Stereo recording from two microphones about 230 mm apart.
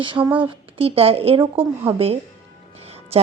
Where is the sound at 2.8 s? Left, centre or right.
Right.